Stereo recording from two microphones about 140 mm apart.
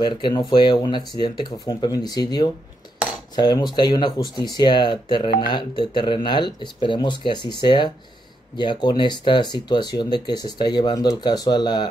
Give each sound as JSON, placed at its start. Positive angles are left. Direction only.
{"t": 0.0, "sound": "speech", "side_deg": 30}